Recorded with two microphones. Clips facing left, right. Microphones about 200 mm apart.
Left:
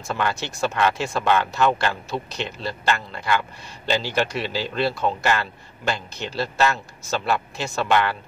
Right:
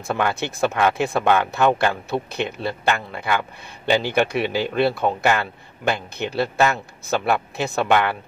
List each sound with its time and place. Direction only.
0.1 s a man's voice: 55° right (ahead or behind)